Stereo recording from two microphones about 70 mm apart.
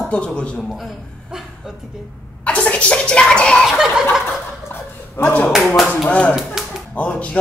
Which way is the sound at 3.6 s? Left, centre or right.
Centre.